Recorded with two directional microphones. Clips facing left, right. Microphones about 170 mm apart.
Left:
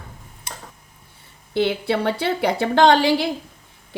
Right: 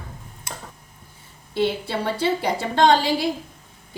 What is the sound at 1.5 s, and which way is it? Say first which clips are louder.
A woman's voice: left 3 dB; 70° left (ahead or behind).